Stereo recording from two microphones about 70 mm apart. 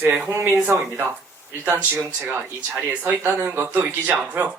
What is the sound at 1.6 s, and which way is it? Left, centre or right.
Speech, right.